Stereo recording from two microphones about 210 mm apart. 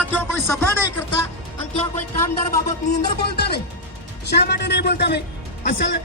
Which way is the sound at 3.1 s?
50° left (ahead or behind).